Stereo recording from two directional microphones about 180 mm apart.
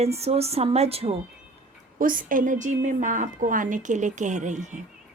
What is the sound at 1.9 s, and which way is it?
A woman's voice, 50° right (ahead or behind).